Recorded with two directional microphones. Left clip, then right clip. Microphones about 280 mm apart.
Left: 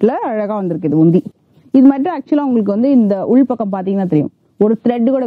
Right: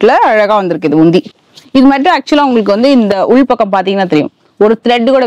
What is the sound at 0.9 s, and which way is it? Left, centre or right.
Speech, right.